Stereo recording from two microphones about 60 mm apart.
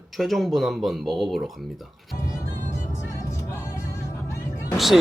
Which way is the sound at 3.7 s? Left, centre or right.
Left.